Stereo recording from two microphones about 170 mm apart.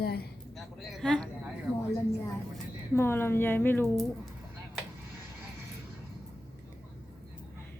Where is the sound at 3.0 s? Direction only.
15° left (ahead or behind).